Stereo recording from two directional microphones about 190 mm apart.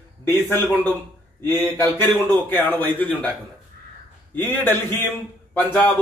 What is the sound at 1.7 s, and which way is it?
A man's voice, 10° left (ahead or behind).